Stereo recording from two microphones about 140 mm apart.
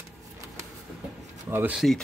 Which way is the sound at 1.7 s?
Centre (ahead or behind).